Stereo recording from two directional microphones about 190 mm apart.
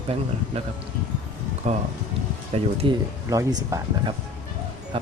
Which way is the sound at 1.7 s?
35° right (ahead or behind).